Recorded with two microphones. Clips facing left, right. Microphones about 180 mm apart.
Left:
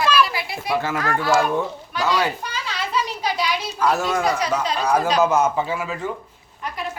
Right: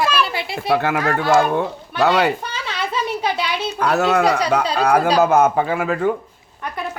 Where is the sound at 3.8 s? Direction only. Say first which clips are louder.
Right 4 dB; 65° right (ahead or behind).